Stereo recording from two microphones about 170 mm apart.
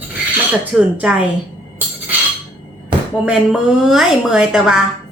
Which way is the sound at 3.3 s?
5° right (ahead or behind).